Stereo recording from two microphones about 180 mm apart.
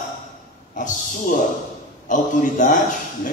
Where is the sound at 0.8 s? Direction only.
45° left (ahead or behind).